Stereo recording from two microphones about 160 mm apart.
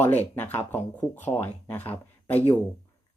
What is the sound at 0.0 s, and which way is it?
Speech, 10° left (ahead or behind).